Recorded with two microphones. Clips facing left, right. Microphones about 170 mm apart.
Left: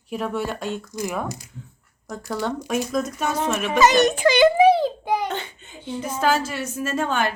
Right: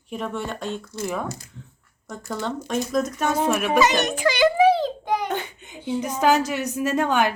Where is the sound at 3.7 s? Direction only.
40° left (ahead or behind).